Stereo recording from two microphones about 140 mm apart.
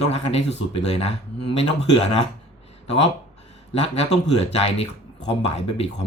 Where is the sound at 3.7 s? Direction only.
45° left (ahead or behind).